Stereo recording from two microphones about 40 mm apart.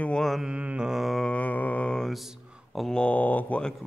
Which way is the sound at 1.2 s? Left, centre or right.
Left.